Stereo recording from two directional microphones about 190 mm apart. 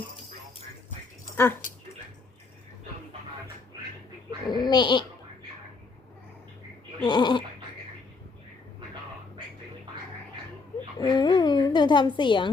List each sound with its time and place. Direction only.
4.4 s speech: 20° left (ahead or behind)
7.0 s speech: 20° left (ahead or behind)
10.9 s a woman's voice: 20° left (ahead or behind)